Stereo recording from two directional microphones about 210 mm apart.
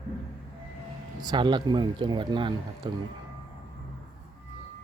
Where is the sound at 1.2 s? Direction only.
20° right (ahead or behind).